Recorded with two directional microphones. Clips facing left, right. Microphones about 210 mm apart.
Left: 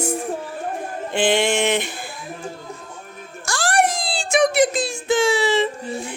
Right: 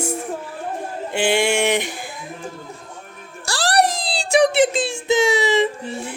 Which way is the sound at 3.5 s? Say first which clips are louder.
Right 1 dB; 35° right (ahead or behind).